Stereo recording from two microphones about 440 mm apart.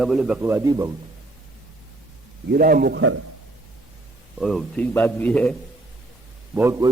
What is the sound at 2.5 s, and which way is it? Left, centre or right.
Speech, centre.